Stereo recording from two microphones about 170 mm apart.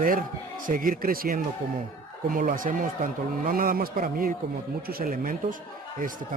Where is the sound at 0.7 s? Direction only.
55° right (ahead or behind).